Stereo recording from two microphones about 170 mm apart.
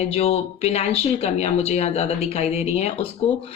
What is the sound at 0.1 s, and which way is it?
Speech, 35° left (ahead or behind).